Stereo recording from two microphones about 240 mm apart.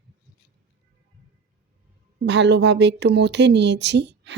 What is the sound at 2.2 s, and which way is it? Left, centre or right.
A woman's voice, right.